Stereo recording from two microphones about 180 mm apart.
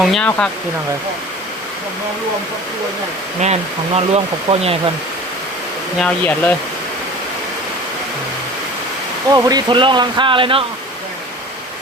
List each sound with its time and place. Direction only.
0.0 s speech: 5° left (ahead or behind)
3.4 s speech: 35° right (ahead or behind)
6.0 s speech: 10° left (ahead or behind)
9.3 s speech: 20° right (ahead or behind)